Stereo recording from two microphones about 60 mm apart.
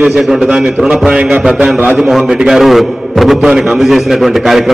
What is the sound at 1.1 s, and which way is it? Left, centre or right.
Speech, centre.